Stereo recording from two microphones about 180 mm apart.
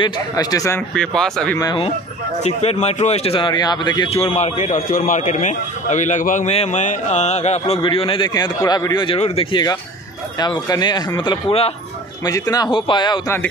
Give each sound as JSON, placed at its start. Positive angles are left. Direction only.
{"t": 0.0, "sound": "speech", "side_deg": 20}
{"t": 0.9, "sound": "speech", "side_deg": 5}
{"t": 1.6, "sound": "speech", "side_deg": 20}
{"t": 2.4, "sound": "a man's voice", "side_deg": 35}
{"t": 4.2, "sound": "a man's voice", "side_deg": 40}
{"t": 12.3, "sound": "speech", "side_deg": 20}